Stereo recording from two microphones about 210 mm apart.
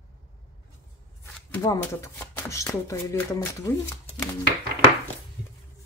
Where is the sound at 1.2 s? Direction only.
15° left (ahead or behind).